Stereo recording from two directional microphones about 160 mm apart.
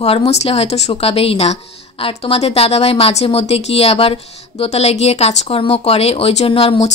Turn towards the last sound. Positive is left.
turn(degrees=35)  # may be behind; listen again after turning